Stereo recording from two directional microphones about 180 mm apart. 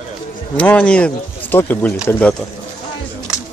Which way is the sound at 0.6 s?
5° left (ahead or behind).